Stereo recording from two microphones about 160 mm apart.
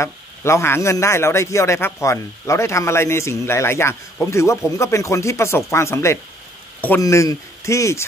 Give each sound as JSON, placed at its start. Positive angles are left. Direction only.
{"t": 0.0, "sound": "a man's voice", "side_deg": 15}